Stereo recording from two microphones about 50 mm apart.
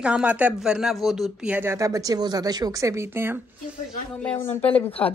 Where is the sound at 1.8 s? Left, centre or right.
Right.